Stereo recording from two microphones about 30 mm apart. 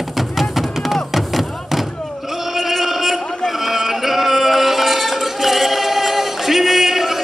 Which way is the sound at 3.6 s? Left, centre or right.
Centre.